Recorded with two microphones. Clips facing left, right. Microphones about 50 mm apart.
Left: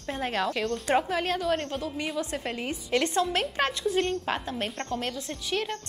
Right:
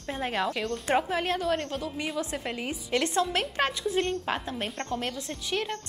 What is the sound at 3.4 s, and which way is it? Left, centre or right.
A woman's voice, centre.